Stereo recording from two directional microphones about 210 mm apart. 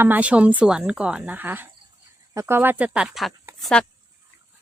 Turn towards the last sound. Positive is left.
turn(degrees=5)  # may be behind; listen again after turning